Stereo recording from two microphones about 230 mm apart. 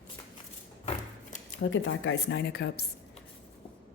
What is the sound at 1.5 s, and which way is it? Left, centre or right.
Speech, left.